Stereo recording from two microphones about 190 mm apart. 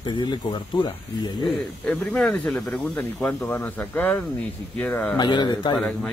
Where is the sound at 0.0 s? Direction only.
25° left (ahead or behind).